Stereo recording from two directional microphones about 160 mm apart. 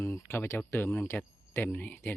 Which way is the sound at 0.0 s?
15° left (ahead or behind).